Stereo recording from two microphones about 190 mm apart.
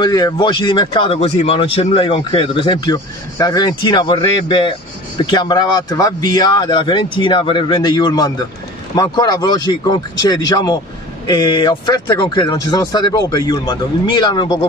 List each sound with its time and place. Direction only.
0.0 s speech: 20° left (ahead or behind)